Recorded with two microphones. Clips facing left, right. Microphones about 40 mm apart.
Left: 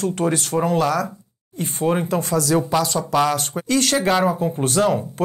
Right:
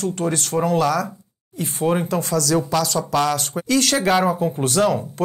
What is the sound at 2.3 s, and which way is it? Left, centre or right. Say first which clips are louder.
Speech: left 1 dB; left.